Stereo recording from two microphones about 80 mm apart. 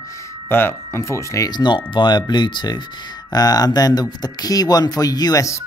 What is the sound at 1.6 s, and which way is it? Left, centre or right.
Speech, left.